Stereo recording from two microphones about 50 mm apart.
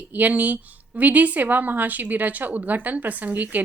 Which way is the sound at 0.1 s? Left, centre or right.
Right.